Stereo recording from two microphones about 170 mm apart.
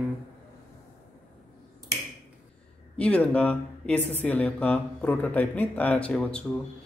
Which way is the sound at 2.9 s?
5° left (ahead or behind).